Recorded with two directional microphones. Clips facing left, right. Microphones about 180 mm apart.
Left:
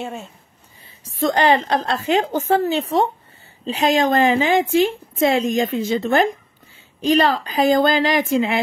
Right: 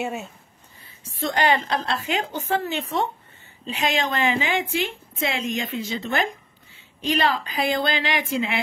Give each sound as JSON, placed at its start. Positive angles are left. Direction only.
{"t": 0.0, "sound": "speech", "side_deg": -5}
{"t": 1.0, "sound": "a woman's voice", "side_deg": 40}